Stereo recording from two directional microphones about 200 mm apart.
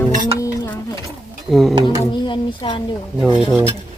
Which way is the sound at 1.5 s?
Centre (ahead or behind).